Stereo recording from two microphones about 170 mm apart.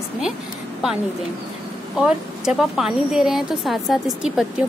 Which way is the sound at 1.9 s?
5° right (ahead or behind).